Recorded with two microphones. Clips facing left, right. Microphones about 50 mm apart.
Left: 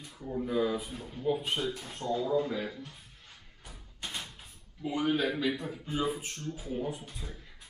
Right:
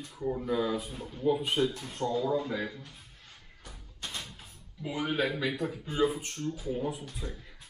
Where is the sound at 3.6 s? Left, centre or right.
Centre.